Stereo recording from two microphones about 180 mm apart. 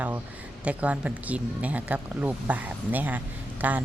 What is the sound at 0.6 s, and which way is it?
Speech, 5° right (ahead or behind).